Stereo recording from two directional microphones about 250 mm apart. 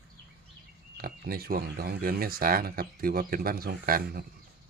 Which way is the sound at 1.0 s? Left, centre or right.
Right.